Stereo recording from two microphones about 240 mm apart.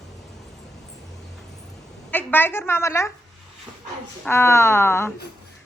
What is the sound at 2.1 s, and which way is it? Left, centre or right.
A woman's voice, centre.